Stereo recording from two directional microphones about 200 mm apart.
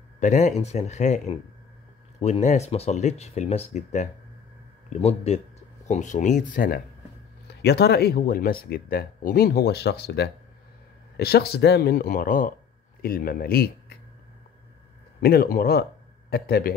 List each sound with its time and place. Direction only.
0.2 s speech: 35° left (ahead or behind)
7.4 s speech: 55° left (ahead or behind)
15.1 s speech: 50° left (ahead or behind)